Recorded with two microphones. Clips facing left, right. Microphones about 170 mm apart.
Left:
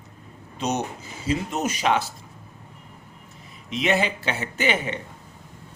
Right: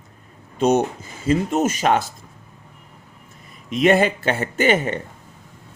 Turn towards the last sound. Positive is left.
turn(degrees=-50)  # may be behind; listen again after turning